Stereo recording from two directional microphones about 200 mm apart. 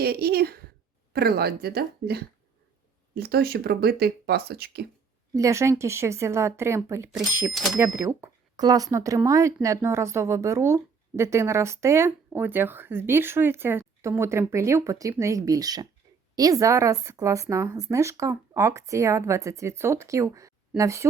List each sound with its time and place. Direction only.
0.0 s a woman's voice: 50° right (ahead or behind)
5.3 s speech: 15° right (ahead or behind)
7.5 s speech: centre (ahead or behind)
7.8 s speech: 10° right (ahead or behind)